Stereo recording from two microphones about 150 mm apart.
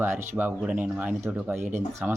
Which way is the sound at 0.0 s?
15° right (ahead or behind).